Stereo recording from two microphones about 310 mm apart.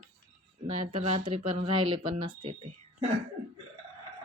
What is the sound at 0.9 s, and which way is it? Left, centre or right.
Speech, centre.